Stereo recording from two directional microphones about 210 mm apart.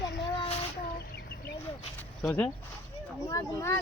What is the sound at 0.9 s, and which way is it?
Chicken, 50° left (ahead or behind).